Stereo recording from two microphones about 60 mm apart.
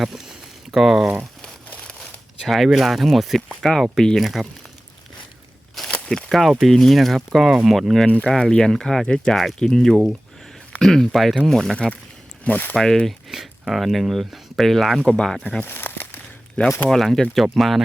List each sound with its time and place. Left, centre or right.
0.0 s a sound: centre
2.0 s zipper: centre
2.6 s speech: centre
6.1 s speech: centre
8.0 s speech: left
8.3 s speech: centre
12.5 s speech: left
12.7 s speech: centre
15.6 s a sound: left
16.6 s speech: centre
16.9 s speech: centre